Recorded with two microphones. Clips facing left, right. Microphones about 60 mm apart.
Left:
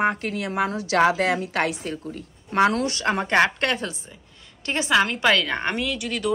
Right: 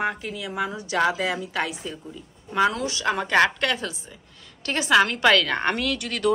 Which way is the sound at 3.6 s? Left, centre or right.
Left.